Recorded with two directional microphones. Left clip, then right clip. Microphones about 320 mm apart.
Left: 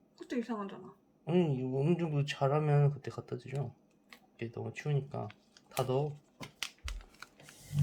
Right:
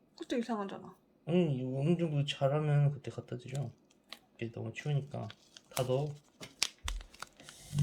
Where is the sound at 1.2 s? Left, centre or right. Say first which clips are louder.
Left 1 dB; centre.